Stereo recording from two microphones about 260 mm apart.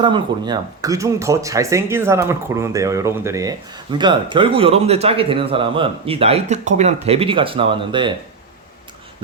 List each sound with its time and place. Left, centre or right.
0.0 s a man's voice: centre